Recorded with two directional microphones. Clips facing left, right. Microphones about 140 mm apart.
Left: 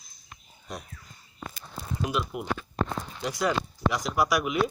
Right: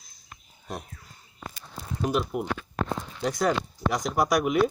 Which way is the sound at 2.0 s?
40° right (ahead or behind).